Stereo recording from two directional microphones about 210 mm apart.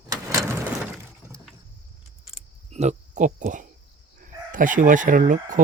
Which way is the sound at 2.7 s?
30° right (ahead or behind).